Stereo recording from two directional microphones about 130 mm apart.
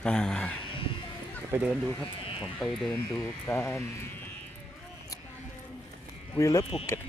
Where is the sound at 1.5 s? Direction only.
10° right (ahead or behind).